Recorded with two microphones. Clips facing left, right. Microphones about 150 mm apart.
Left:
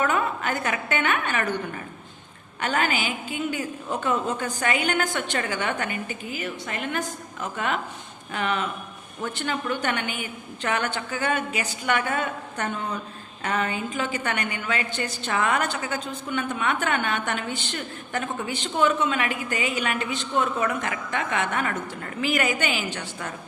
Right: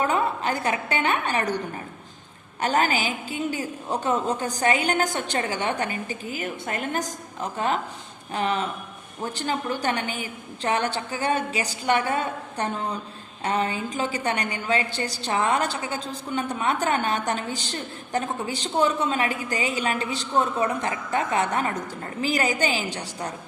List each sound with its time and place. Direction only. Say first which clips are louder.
0.0 s a woman's voice: right 1 dB; 30° right (ahead or behind)
2.6 s a woman's voice: right 2 dB; 35° right (ahead or behind)